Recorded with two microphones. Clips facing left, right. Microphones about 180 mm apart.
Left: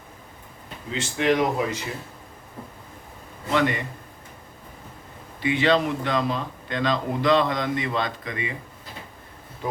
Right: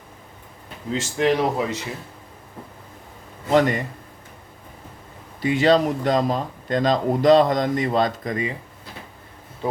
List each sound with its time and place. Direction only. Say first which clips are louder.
0.9 s speech: right 1 dB; 35° right (ahead or behind)
3.5 s speech: right 5 dB; 45° right (ahead or behind)
5.4 s speech: right 4 dB; 40° right (ahead or behind)